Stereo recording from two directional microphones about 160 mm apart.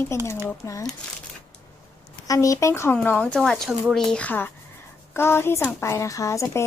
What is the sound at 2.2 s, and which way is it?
Speech, 20° left (ahead or behind).